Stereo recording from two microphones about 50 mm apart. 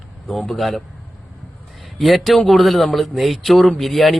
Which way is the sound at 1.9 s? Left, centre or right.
Centre.